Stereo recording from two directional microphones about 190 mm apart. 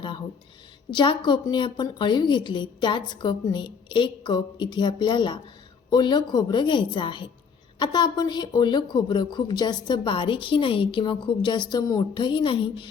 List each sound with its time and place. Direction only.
0.9 s speech: 25° left (ahead or behind)